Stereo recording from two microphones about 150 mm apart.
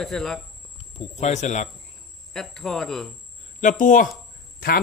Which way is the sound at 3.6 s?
55° left (ahead or behind).